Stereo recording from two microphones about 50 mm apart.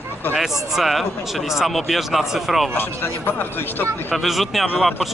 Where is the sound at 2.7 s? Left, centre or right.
Left.